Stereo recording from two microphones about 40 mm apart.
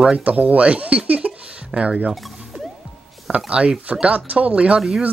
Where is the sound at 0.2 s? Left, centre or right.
Right.